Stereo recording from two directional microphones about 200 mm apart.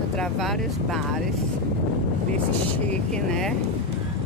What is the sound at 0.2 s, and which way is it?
Speech, centre (ahead or behind).